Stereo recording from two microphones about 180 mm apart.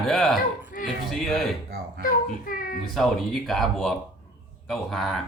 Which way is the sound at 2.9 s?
Centre (ahead or behind).